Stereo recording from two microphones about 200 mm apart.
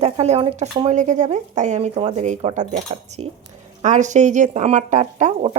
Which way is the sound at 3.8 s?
35° right (ahead or behind).